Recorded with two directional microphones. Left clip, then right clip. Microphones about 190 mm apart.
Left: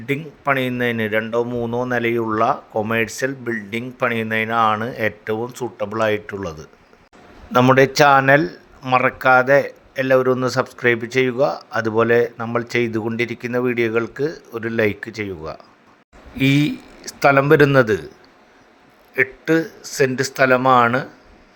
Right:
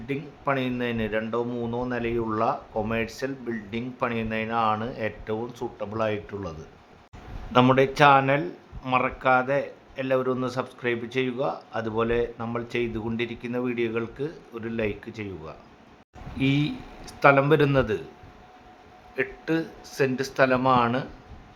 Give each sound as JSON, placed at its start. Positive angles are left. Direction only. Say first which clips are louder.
{"t": 0.1, "sound": "speech", "louder": "left 7 dB", "side_deg": 20}
{"t": 7.8, "sound": "speech", "louder": "left 5 dB", "side_deg": 25}
{"t": 19.1, "sound": "speech", "louder": "left 9 dB", "side_deg": 25}